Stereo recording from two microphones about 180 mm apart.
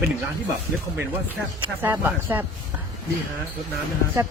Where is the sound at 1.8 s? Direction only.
10° right (ahead or behind).